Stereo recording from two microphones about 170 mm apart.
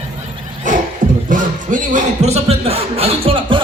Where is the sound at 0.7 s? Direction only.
50° right (ahead or behind); by 3.6 s 30° right (ahead or behind).